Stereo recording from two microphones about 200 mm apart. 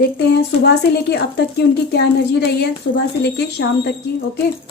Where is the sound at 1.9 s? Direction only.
55° left (ahead or behind).